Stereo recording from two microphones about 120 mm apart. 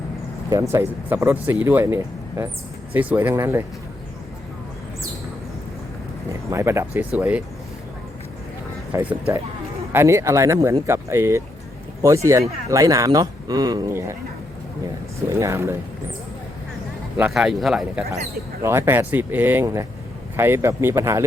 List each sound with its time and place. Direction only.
0.7 s speech: 20° right (ahead or behind)
2.9 s speech: 15° right (ahead or behind)
6.2 s speech: 25° right (ahead or behind)
8.9 s speech: 15° right (ahead or behind); by 13.9 s 35° right (ahead or behind)
13.9 s speech: 20° right (ahead or behind)
15.4 s speech: 25° right (ahead or behind)
17.2 s speech: 5° right (ahead or behind)
18.6 s speech: 20° right (ahead or behind)
19.6 s speech: 30° right (ahead or behind)